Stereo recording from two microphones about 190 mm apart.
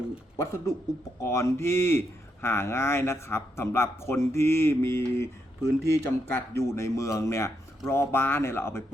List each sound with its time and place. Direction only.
0.3 s speech: 15° left (ahead or behind)